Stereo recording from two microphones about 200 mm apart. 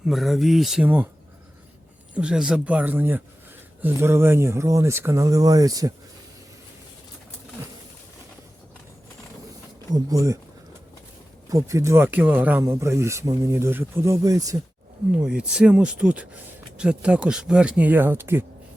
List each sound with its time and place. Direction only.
0.0 s speech: centre (ahead or behind)
2.1 s speech: 5° right (ahead or behind)
9.9 s speech: 15° right (ahead or behind)
11.4 s speech: 15° right (ahead or behind)
15.1 s speech: 5° right (ahead or behind)